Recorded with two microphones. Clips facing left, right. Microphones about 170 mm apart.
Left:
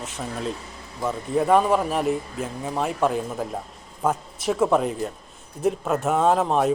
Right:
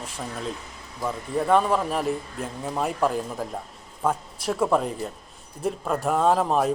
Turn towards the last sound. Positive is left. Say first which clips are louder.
# left 1 dB
turn(degrees=0)  # may be behind; listen again after turning